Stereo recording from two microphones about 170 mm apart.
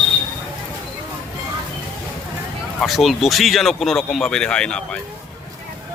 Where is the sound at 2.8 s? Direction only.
Centre (ahead or behind).